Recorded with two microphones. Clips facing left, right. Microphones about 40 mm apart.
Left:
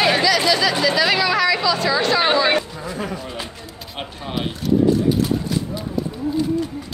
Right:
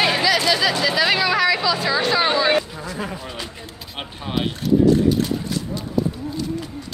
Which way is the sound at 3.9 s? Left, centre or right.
Centre.